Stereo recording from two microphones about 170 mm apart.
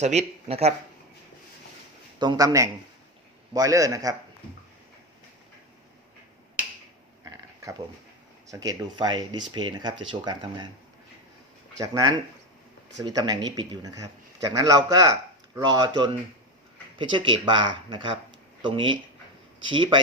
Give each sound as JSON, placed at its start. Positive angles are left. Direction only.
{"t": 0.0, "sound": "speech", "side_deg": -40}
{"t": 2.1, "sound": "speech", "side_deg": -25}
{"t": 7.3, "sound": "a sound", "side_deg": -20}
{"t": 8.4, "sound": "speech", "side_deg": -20}
{"t": 11.8, "sound": "speech", "side_deg": -20}